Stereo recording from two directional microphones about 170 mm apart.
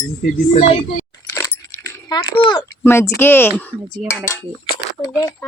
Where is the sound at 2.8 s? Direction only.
15° left (ahead or behind).